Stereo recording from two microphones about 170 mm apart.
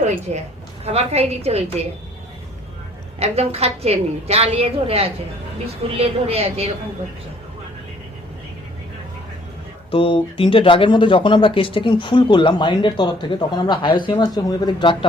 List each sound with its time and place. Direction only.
0.3 s a woman's voice: 40° right (ahead or behind)
3.2 s a woman's voice: 35° right (ahead or behind)
9.9 s speech: 30° left (ahead or behind)